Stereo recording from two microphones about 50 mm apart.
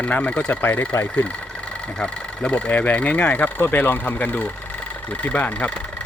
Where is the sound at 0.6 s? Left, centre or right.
Left.